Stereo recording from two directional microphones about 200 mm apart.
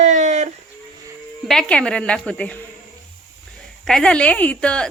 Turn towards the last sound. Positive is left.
turn(degrees=5)  # may be behind; listen again after turning